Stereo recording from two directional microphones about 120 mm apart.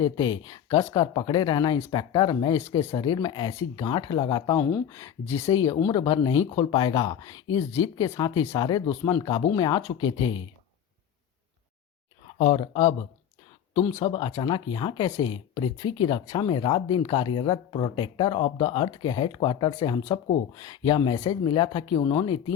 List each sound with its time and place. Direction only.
0.0 s speech: 35° left (ahead or behind); by 5.5 s 20° left (ahead or behind)
5.7 s speech: 45° left (ahead or behind)
6.4 s speech: 50° left (ahead or behind)
7.1 s speech: 30° left (ahead or behind)
12.4 s speech: 50° left (ahead or behind)